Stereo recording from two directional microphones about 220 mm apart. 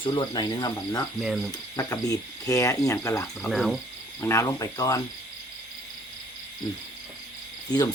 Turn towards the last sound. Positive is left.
turn(degrees=20)  # may be behind; listen again after turning